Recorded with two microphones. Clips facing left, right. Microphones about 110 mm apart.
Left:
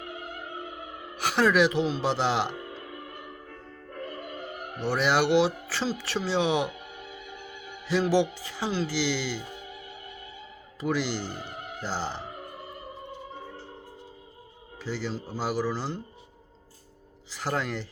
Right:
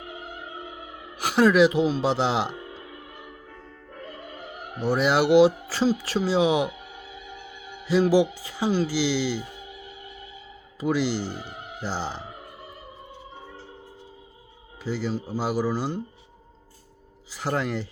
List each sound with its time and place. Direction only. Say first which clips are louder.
1.1 s a man's voice: right 4 dB; 5° right (ahead or behind)
4.8 s speech: right 3 dB; 10° right (ahead or behind)
7.9 s speech: right 4 dB; 10° right (ahead or behind)
10.8 s speech: right 4 dB; 10° right (ahead or behind)
14.8 s speech: right 4 dB; 10° right (ahead or behind)
17.3 s speech: right 3 dB; 5° right (ahead or behind)